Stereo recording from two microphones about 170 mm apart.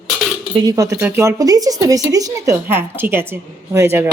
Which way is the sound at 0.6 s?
20° right (ahead or behind).